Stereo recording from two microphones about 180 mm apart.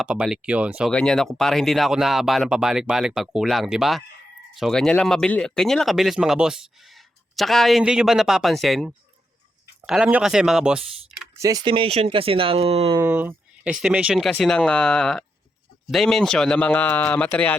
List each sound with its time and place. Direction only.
0.0 s speech: 5° right (ahead or behind)
0.9 s speech: 5° left (ahead or behind)
11.3 s speech: 20° right (ahead or behind); by 13.0 s 35° right (ahead or behind)
13.0 s a man's voice: 10° right (ahead or behind); by 17.6 s 10° left (ahead or behind)